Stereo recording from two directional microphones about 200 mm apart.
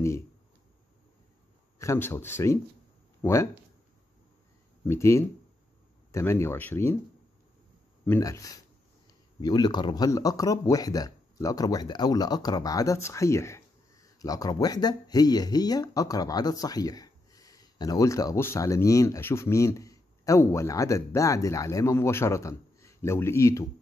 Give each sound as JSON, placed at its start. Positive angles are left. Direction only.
{"t": 1.8, "sound": "speech", "side_deg": 15}
{"t": 4.8, "sound": "speech", "side_deg": 15}
{"t": 8.0, "sound": "speech", "side_deg": 15}